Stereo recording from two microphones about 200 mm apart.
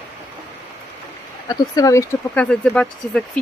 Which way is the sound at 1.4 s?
15° left (ahead or behind).